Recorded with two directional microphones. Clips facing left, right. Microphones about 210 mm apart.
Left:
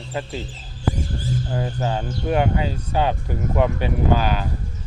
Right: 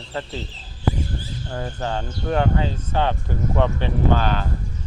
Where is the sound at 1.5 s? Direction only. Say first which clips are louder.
Even; 15° left (ahead or behind).